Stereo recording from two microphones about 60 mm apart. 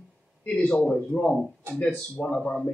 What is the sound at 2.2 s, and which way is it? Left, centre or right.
Speech, left.